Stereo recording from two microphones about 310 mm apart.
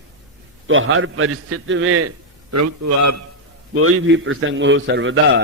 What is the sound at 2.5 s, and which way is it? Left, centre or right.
Speech, right.